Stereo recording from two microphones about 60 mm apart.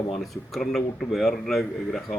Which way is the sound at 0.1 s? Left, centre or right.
Centre.